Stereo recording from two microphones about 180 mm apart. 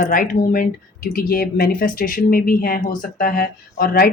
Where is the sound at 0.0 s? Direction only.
50° left (ahead or behind).